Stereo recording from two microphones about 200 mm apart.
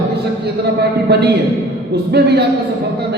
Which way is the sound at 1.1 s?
55° right (ahead or behind).